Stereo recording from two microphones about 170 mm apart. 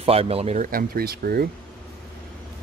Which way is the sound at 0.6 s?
55° right (ahead or behind).